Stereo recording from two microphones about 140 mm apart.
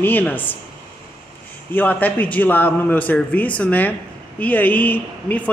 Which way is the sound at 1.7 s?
15° left (ahead or behind).